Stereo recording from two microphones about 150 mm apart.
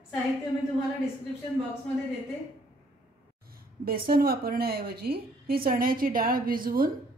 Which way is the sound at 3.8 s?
85° right.